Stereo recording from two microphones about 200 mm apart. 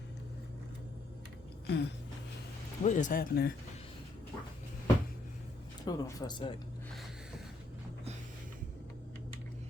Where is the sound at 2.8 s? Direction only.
40° left (ahead or behind).